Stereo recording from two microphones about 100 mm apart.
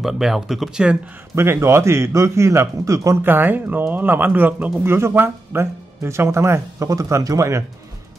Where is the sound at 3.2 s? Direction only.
20° right (ahead or behind).